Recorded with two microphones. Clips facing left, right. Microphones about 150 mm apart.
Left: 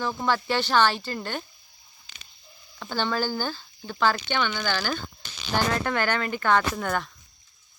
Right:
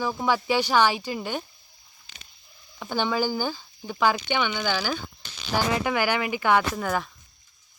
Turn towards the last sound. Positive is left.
turn(degrees=0)  # may be behind; listen again after turning